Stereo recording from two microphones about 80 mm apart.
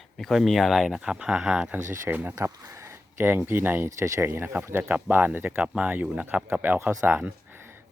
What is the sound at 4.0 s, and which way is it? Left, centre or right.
Speech, right.